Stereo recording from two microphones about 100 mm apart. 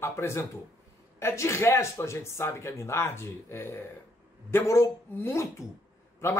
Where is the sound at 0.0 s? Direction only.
25° left (ahead or behind).